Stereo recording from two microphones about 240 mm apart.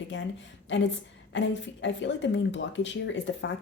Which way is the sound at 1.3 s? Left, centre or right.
Left.